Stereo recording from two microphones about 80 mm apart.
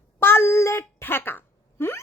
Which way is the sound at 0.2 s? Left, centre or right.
Left.